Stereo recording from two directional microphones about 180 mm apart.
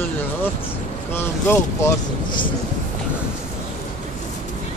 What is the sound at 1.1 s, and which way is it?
Speech, 15° left (ahead or behind).